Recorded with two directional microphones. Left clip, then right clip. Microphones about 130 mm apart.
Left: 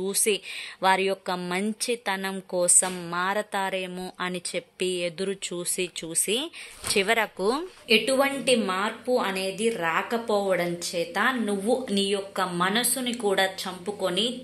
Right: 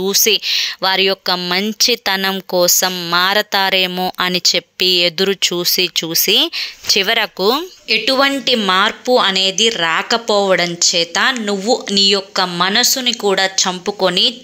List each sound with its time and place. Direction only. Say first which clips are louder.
0.0 s speech: right 12 dB; 25° right (ahead or behind)
3.1 s speech: right 16 dB; 30° right (ahead or behind)